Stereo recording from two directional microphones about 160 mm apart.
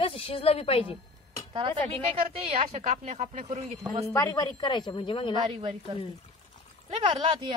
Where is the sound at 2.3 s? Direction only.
45° right (ahead or behind).